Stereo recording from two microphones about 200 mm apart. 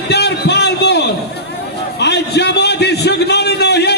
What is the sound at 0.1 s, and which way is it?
Speech, 55° left (ahead or behind).